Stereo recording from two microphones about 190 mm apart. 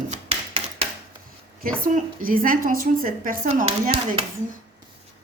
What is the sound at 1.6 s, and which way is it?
A woman's voice, 50° right (ahead or behind).